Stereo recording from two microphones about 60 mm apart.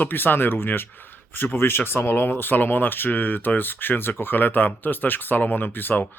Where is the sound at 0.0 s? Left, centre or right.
Left.